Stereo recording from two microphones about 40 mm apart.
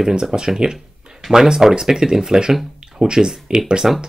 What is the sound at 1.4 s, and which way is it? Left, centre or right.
Speech, centre.